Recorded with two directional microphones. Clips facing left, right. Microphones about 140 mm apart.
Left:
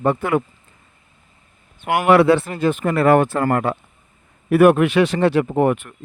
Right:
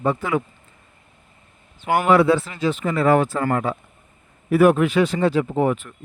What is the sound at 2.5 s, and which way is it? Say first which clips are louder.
Speech: left 3 dB; 55° left (ahead or behind).